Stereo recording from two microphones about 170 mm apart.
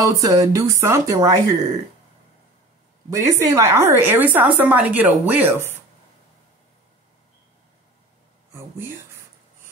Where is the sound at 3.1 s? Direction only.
20° right (ahead or behind).